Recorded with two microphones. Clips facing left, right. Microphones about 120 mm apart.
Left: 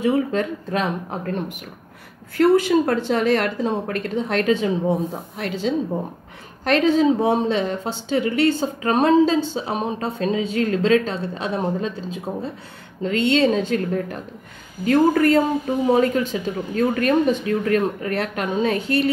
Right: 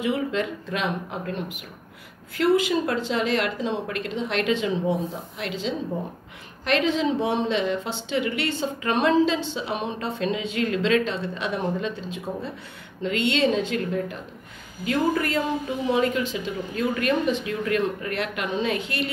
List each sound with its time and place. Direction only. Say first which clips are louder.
0.0 s speech: left 5 dB; 40° left (ahead or behind)
2.3 s speech: left 5 dB; 45° left (ahead or behind)